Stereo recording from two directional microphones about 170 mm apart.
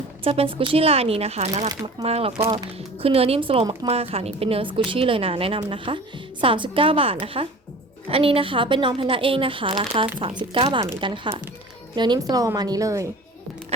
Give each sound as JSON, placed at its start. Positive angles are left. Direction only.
{"t": 0.3, "sound": "a woman's voice", "side_deg": -35}